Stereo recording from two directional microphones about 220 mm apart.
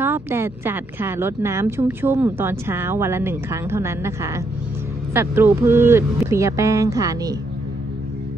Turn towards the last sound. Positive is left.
turn(degrees=-15)  # may be behind; listen again after turning